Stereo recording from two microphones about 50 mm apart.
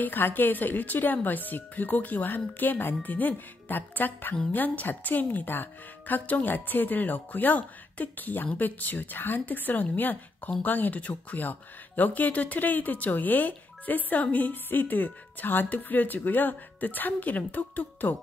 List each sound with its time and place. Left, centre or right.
0.0 s speech: left